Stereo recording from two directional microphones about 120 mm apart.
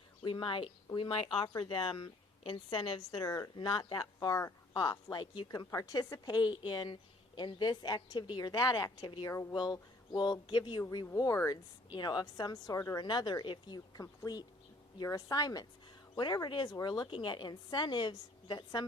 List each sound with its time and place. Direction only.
0.3 s a woman's voice: 45° left (ahead or behind)
3.2 s speech: 30° left (ahead or behind)
3.7 s a woman's voice: 40° left (ahead or behind)
11.0 s a woman's voice: 25° left (ahead or behind)